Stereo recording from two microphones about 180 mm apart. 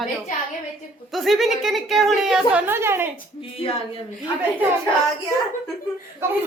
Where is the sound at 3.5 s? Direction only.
30° left (ahead or behind).